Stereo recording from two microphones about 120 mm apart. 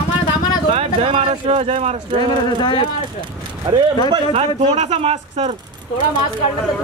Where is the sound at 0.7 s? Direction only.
55° right (ahead or behind).